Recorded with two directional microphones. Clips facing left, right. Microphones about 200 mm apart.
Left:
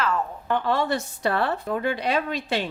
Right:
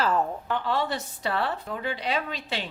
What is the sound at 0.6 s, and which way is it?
A woman's voice, 50° left (ahead or behind).